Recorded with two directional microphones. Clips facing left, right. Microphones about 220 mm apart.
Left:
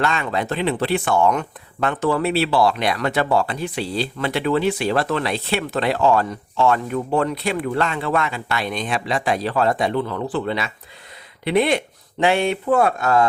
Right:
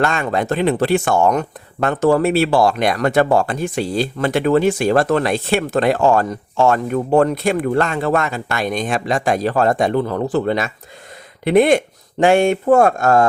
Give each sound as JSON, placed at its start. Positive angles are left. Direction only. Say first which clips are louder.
{"t": 0.0, "sound": "speech", "louder": "right 4 dB", "side_deg": -45}